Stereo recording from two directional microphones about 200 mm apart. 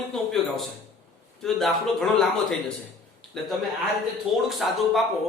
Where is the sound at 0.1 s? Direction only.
Centre (ahead or behind).